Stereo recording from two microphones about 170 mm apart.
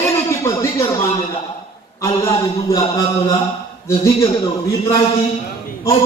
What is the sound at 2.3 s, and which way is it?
A man's voice, 20° left (ahead or behind).